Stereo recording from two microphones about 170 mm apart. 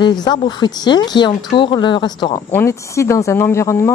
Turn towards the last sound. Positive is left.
turn(degrees=15)  # may be behind; listen again after turning